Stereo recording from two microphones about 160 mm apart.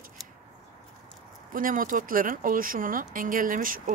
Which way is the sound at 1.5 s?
60° right (ahead or behind).